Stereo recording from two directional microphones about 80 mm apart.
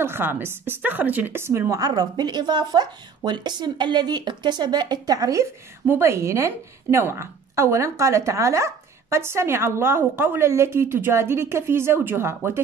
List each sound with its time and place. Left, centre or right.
0.0 s a woman's voice: right